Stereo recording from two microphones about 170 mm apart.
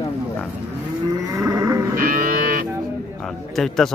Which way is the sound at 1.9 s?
55° right (ahead or behind).